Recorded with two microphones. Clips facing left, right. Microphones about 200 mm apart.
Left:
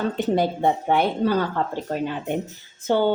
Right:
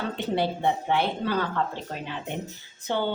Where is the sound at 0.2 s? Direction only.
45° left (ahead or behind).